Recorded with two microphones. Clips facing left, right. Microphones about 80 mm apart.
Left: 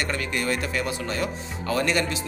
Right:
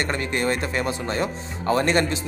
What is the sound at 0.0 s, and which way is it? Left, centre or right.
Speech, right.